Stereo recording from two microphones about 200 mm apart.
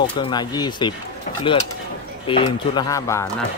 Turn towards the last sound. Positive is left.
turn(degrees=15)  # may be behind; listen again after turning